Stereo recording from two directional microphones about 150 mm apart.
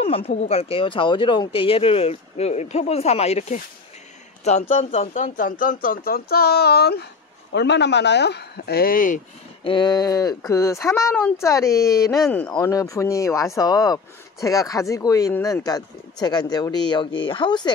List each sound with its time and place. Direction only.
0.0 s a sound: 40° left (ahead or behind)
0.3 s speech: 45° left (ahead or behind); by 7.1 s 90° left
8.3 s speech: 90° left; by 9.2 s 65° left (ahead or behind)
9.6 s speech: 30° left (ahead or behind)